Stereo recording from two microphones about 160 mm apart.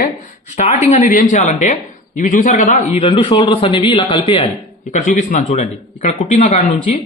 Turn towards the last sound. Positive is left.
turn(degrees=45)  # may be behind; listen again after turning